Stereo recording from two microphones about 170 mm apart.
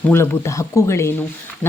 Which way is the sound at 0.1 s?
15° left (ahead or behind).